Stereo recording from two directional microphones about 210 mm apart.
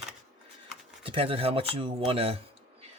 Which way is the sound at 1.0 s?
25° right (ahead or behind).